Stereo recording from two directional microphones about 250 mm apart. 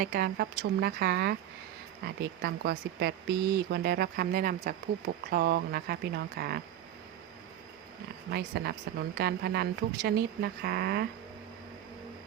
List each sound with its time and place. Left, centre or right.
0.0 s speech: right
8.3 s speech: right